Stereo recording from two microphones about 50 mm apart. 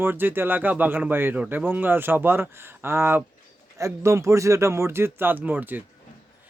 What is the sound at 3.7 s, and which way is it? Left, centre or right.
Speech, right.